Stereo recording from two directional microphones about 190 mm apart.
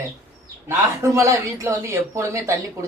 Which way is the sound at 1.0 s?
15° right (ahead or behind).